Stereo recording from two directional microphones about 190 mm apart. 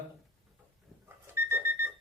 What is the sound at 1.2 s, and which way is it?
Alarm clock, 15° right (ahead or behind).